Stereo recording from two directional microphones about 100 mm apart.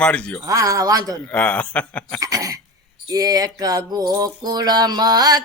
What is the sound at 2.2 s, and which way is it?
Speech, 35° right (ahead or behind).